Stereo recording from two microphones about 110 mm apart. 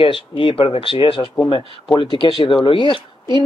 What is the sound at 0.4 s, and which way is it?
Speech, 55° left (ahead or behind).